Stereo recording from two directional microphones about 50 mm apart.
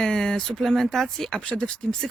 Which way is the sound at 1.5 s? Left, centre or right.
Centre.